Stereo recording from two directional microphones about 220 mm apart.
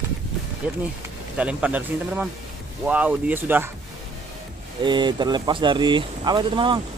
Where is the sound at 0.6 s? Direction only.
5° right (ahead or behind).